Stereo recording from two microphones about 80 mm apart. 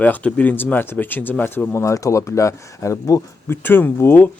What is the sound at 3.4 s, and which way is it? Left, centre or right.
Speech, left.